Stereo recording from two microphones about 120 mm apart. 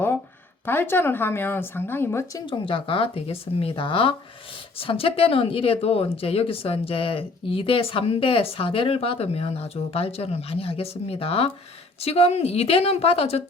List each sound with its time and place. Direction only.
0.6 s a woman's voice: 20° left (ahead or behind)
2.5 s a woman's voice: 50° left (ahead or behind)